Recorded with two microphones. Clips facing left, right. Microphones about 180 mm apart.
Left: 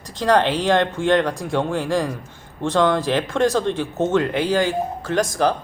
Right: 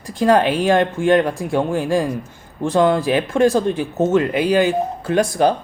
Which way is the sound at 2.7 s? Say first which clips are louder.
Right 3 dB; 5° right (ahead or behind).